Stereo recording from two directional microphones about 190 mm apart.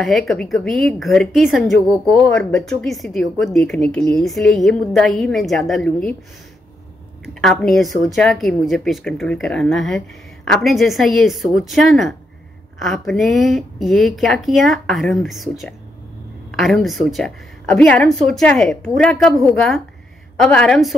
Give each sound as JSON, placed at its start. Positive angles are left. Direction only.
{"t": 0.0, "sound": "a woman's voice", "side_deg": 0}
{"t": 7.4, "sound": "a woman's voice", "side_deg": 0}